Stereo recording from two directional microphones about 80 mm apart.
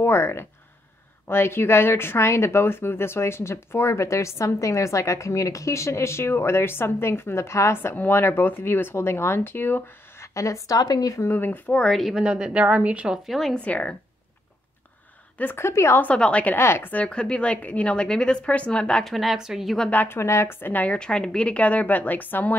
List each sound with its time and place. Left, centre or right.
0.0 s speech: left
10.3 s a woman's voice: left
11.2 s a woman's voice: left
11.7 s a woman's voice: centre
12.1 s speech: centre
13.3 s a woman's voice: centre
13.6 s a woman's voice: centre
15.3 s speech: left
16.0 s a woman's voice: centre
16.5 s a woman's voice: left; by 19.1 s centre
19.1 s a woman's voice: centre
19.9 s a woman's voice: left
20.2 s a woman's voice: left